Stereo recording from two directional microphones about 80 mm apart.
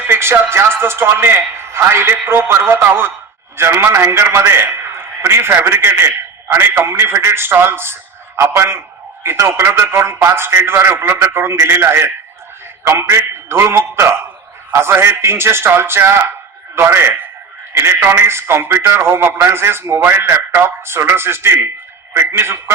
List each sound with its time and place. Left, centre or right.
0.1 s a man's voice: right